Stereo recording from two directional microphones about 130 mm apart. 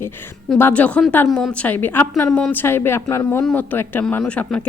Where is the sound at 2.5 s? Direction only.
20° left (ahead or behind).